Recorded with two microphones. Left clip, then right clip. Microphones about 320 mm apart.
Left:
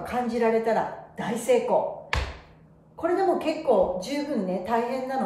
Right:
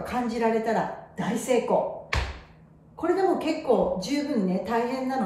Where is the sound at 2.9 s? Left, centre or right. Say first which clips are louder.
Even; centre.